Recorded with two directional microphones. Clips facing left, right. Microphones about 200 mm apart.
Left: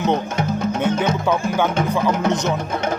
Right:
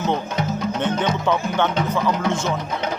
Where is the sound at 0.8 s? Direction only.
10° left (ahead or behind).